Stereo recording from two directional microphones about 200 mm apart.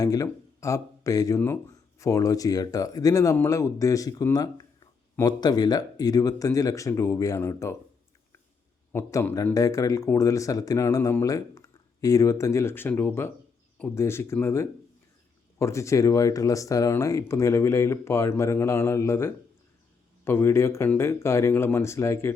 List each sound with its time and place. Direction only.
0.0 s speech: 15° left (ahead or behind)
8.9 s speech: 10° left (ahead or behind)